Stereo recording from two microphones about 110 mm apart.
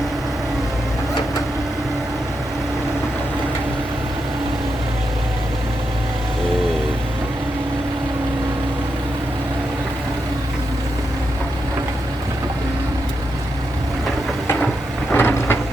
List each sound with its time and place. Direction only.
15.1 s vehicle: 20° left (ahead or behind)